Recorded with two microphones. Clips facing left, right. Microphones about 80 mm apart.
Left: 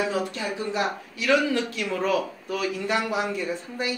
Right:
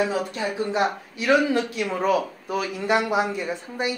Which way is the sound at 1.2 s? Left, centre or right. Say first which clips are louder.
Right 2 dB; right.